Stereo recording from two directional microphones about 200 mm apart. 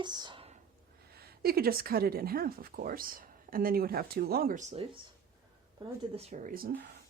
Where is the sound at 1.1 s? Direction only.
50° right (ahead or behind).